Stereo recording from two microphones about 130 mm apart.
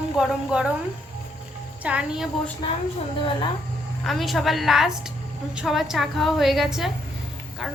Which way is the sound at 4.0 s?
Centre (ahead or behind).